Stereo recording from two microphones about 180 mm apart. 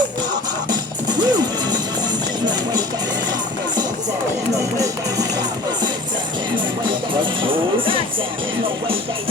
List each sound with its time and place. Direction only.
0.7 s music: 25° right (ahead or behind)
7.2 s music: 30° right (ahead or behind)